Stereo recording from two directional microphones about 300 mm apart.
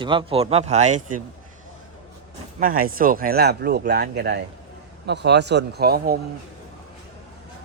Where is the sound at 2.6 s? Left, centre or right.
Right.